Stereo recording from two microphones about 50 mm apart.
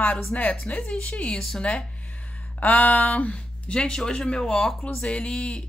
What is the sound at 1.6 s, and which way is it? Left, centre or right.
Speech, left.